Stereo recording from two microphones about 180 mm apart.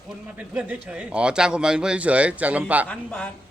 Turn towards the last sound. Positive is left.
turn(degrees=5)  # may be behind; listen again after turning